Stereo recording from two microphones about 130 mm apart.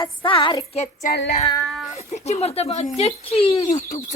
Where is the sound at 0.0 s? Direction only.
40° left (ahead or behind).